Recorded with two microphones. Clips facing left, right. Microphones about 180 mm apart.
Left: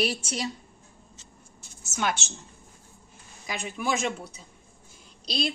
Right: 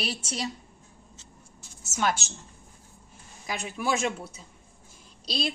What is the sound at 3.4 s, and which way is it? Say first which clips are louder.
Speech: even; 5° right (ahead or behind).